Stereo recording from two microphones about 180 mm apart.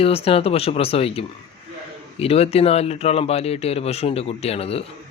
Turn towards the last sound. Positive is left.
turn(degrees=35)  # may be behind; listen again after turning